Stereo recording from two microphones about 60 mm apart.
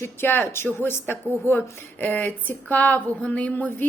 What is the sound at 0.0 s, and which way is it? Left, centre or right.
A woman's voice, left.